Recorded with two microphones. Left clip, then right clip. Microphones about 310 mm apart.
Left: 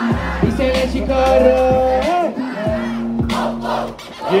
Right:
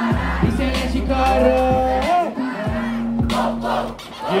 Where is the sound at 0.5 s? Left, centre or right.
Centre.